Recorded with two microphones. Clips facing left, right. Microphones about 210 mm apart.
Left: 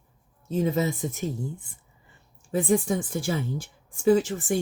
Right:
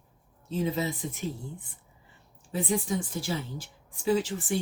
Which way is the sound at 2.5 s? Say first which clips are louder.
Left 6 dB; 50° left (ahead or behind).